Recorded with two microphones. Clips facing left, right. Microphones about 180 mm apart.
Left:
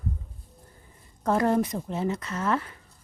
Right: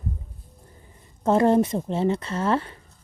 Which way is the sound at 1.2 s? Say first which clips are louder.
Right 5 dB; 25° right (ahead or behind).